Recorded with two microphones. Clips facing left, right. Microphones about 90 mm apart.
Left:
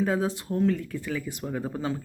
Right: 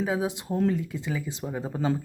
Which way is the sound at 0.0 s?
10° right (ahead or behind).